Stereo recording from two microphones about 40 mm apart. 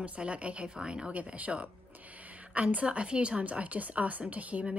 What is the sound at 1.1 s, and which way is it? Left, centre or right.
A woman's voice, right.